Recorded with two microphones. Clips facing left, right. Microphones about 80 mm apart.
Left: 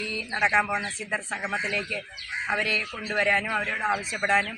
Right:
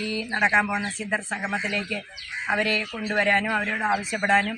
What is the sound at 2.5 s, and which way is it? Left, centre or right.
A man's voice, centre.